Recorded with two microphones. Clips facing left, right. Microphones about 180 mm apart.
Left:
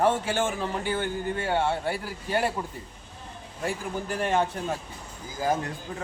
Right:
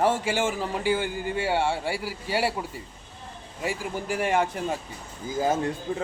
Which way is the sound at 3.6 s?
10° right (ahead or behind).